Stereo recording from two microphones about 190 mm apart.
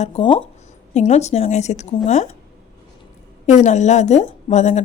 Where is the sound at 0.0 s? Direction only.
30° left (ahead or behind).